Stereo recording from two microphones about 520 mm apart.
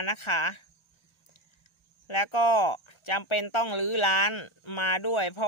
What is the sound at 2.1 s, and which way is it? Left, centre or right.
Speech, left.